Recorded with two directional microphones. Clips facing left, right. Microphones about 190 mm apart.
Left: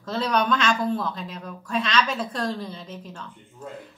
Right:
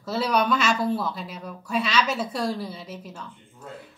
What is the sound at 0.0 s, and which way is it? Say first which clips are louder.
A woman's voice: right 1 dB; 5° right (ahead or behind).